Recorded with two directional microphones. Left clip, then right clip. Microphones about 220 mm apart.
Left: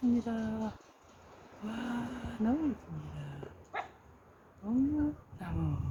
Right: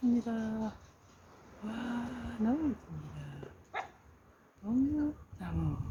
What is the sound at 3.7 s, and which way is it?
Dog, 55° right (ahead or behind).